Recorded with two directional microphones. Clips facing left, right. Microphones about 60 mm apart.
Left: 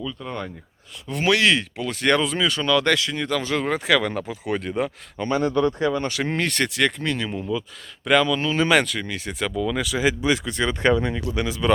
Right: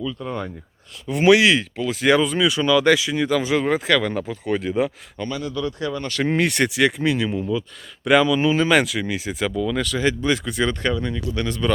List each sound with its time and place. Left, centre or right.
0.0 s speech: centre
1.5 s speech: centre
5.4 s speech: left
5.8 s speech: left
6.2 s speech: centre
7.3 s speech: centre
8.0 s speech: centre
8.5 s speech: centre
10.8 s speech: left
11.4 s speech: centre